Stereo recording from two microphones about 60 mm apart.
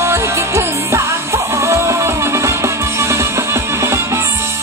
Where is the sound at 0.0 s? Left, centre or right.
Right.